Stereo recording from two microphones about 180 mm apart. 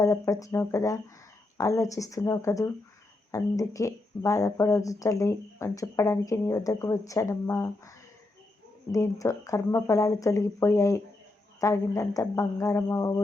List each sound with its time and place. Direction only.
0.0 s speech: 20° left (ahead or behind)